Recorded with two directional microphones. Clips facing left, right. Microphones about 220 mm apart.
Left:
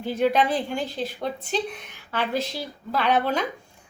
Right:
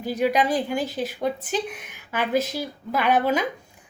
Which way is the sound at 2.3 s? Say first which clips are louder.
Right 7 dB; 45° right (ahead or behind).